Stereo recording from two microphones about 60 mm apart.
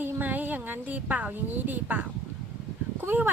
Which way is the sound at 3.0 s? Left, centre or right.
Right.